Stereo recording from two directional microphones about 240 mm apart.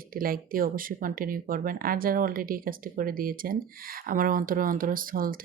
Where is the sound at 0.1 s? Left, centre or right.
Right.